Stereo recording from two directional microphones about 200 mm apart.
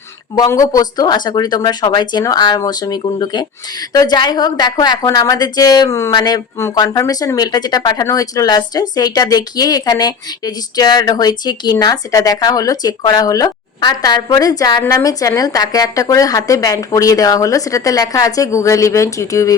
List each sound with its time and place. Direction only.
0.3 s speech: 15° left (ahead or behind)